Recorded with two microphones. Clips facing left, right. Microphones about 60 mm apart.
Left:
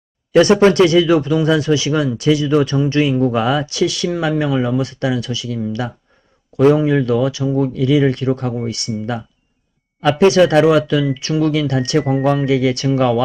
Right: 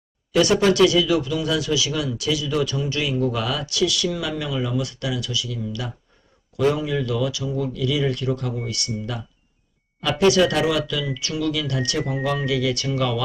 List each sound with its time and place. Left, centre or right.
0.3 s speech: left
10.0 s speech: left